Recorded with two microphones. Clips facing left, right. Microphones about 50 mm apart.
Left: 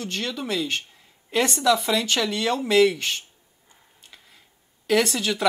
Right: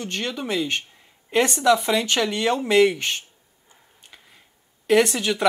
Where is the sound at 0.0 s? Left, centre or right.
Right.